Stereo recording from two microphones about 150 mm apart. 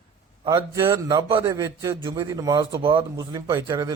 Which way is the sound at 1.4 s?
20° right (ahead or behind).